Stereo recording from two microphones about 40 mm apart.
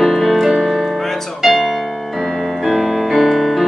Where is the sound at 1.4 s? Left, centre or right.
Centre.